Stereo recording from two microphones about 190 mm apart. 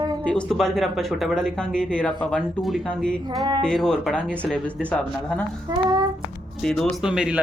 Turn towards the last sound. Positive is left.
turn(degrees=-5)  # may be behind; listen again after turning